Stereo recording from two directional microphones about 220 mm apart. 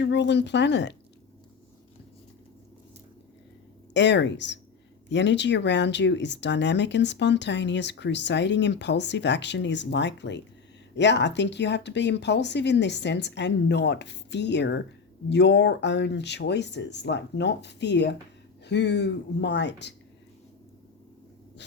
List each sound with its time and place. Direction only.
0.0 s speech: 50° left (ahead or behind)
3.9 s speech: 55° left (ahead or behind)